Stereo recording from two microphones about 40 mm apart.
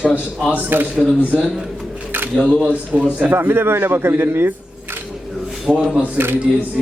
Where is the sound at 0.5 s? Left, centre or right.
Right.